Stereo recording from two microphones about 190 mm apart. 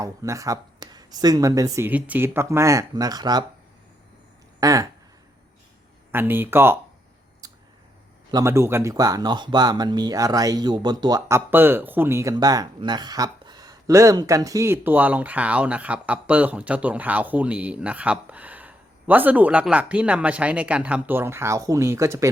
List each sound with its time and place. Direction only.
0.0 s speech: 15° right (ahead or behind)
4.6 s speech: 20° right (ahead or behind)
6.1 s speech: 10° right (ahead or behind)
7.4 s a sound: 20° right (ahead or behind)
8.3 s speech: 15° right (ahead or behind)